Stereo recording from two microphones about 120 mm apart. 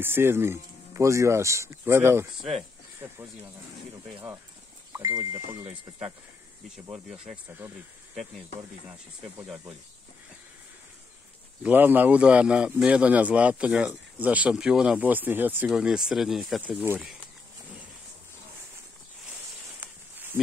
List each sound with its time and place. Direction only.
0.0 s speech: 20° right (ahead or behind)
4.9 s speech: 30° right (ahead or behind)
6.9 s speech: 5° right (ahead or behind)
11.6 s a man's voice: 15° right (ahead or behind)
16.6 s a man's voice: 15° right (ahead or behind)
19.8 s a sound: 15° right (ahead or behind)